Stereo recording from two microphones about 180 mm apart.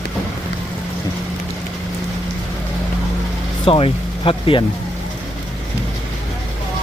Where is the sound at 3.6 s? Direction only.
30° left (ahead or behind).